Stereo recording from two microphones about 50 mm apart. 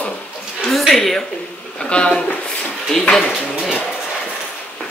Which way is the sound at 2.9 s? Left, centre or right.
Centre.